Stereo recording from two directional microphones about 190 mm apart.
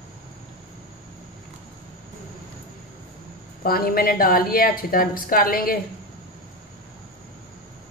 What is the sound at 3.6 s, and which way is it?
A woman's voice, 50° left (ahead or behind).